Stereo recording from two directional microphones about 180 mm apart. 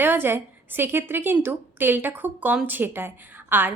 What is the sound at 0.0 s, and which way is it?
A woman's voice, 10° right (ahead or behind).